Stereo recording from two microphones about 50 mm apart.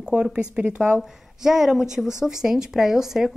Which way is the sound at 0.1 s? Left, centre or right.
Centre.